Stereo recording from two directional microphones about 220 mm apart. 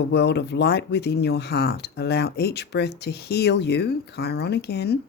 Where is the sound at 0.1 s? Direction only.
50° left (ahead or behind).